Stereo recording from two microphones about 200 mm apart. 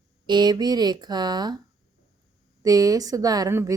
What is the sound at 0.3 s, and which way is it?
Speech, 20° right (ahead or behind).